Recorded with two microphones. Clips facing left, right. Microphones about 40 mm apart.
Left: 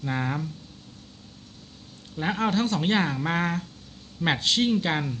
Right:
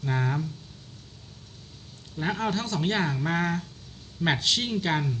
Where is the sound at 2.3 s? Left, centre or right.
Left.